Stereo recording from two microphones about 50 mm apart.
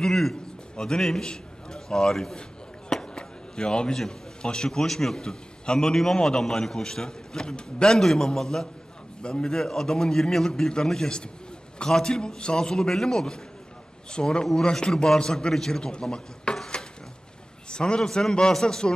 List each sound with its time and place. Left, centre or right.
0.0 s a man's voice: centre
2.9 s chop: centre
4.4 s a man's voice: centre
16.5 s dishes: centre
17.6 s a man's voice: centre